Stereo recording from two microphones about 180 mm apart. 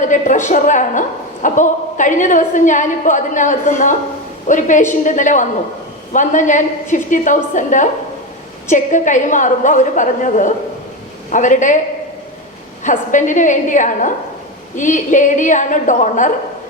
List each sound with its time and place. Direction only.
0.0 s a woman's voice: 45° left (ahead or behind)
12.8 s a woman's voice: 45° left (ahead or behind)